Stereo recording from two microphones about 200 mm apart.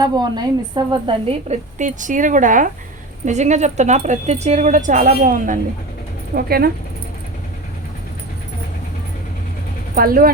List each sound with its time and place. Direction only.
0.0 s a woman's voice: 20° right (ahead or behind); by 6.7 s 50° right (ahead or behind)
9.9 s speech: 45° right (ahead or behind)